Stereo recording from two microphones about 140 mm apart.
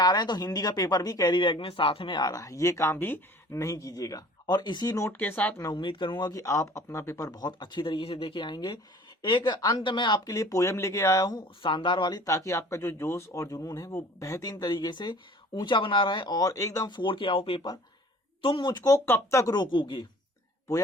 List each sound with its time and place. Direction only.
0.0 s speech: 30° left (ahead or behind)
5.0 s speech: 15° left (ahead or behind)
5.5 s speech: 25° left (ahead or behind)
5.8 s speech: 35° left (ahead or behind)
12.2 s speech: 20° left (ahead or behind)
18.8 s speech: 20° left (ahead or behind)